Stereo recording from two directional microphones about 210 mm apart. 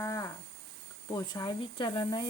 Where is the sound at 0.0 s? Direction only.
15° left (ahead or behind).